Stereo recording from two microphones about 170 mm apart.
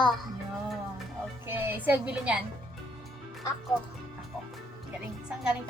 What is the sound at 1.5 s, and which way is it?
Speech, 10° right (ahead or behind).